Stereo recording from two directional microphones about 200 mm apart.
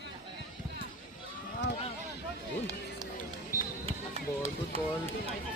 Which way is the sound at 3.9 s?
30° right (ahead or behind).